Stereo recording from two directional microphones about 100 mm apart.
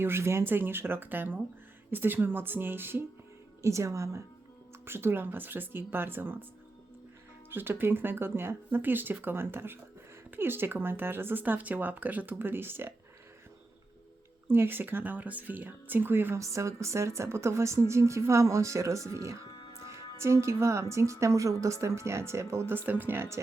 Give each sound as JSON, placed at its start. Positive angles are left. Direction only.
{"t": 0.0, "sound": "speech", "side_deg": -25}
{"t": 7.5, "sound": "speech", "side_deg": -20}
{"t": 14.4, "sound": "speech", "side_deg": -20}